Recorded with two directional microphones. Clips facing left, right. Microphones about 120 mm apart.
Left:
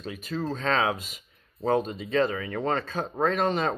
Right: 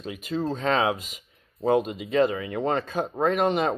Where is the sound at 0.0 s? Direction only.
20° right (ahead or behind).